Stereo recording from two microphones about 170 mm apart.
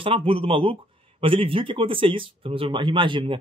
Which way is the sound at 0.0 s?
30° right (ahead or behind).